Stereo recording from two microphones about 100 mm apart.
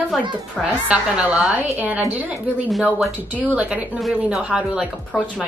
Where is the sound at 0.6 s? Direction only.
10° right (ahead or behind).